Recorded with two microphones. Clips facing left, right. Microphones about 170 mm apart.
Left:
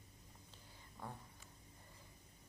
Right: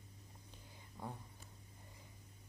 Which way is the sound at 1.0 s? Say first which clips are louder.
Right 3 dB; 15° right (ahead or behind).